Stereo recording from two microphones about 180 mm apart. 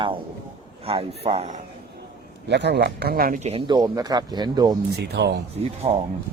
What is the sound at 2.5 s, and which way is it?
Speech, 70° right (ahead or behind).